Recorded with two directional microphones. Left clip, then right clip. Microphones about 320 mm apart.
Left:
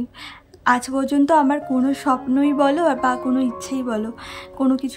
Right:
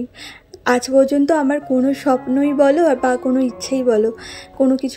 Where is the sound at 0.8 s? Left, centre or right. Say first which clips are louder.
Right 5 dB; left.